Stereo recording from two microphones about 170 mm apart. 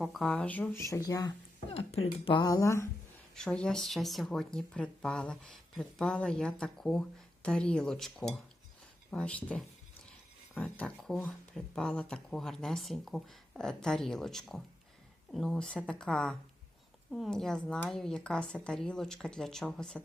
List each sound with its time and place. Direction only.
0.0 s speech: centre (ahead or behind); by 1.3 s 20° left (ahead or behind)
1.7 s speech: 35° left (ahead or behind)
2.0 s speech: 25° left (ahead or behind)
3.3 s speech: 5° left (ahead or behind)